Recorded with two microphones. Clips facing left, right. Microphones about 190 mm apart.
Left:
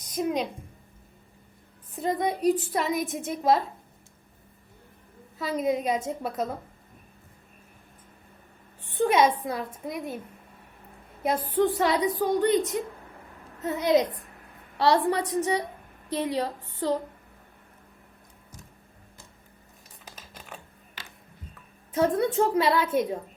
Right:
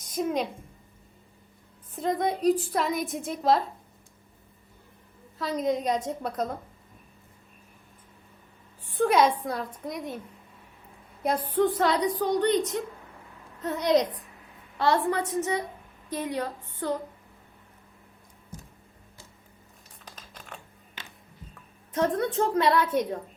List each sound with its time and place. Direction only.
0.1 s a woman's voice: centre (ahead or behind)
2.0 s a woman's voice: 5° left (ahead or behind)
5.4 s a woman's voice: 5° left (ahead or behind)
9.0 s a woman's voice: 5° left (ahead or behind)
11.2 s a woman's voice: centre (ahead or behind)
14.8 s a woman's voice: 35° left (ahead or behind)
20.1 s typing: 5° left (ahead or behind)
21.0 s music: 20° right (ahead or behind)
21.9 s a woman's voice: 10° left (ahead or behind)